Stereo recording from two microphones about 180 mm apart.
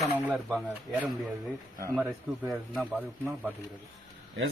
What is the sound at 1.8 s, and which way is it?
Speech, 15° right (ahead or behind).